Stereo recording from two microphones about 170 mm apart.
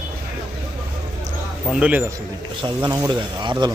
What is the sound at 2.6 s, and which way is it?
Speech, 25° right (ahead or behind).